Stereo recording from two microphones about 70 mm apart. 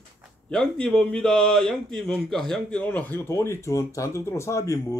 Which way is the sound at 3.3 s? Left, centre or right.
Left.